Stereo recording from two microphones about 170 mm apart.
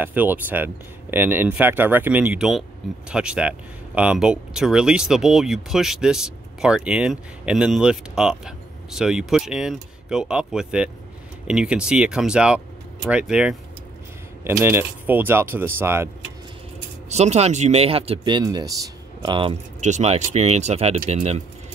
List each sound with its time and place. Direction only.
0.0 s speech: 10° right (ahead or behind)
17.1 s speech: 40° right (ahead or behind)
19.8 s speech: 40° right (ahead or behind)